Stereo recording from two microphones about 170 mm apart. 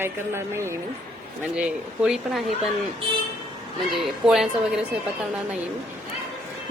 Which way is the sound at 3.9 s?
5° right (ahead or behind).